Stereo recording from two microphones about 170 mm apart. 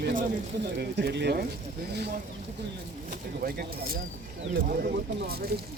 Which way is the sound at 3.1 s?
60° right (ahead or behind).